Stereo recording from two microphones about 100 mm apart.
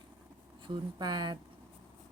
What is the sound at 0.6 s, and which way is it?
Speech, 50° right (ahead or behind).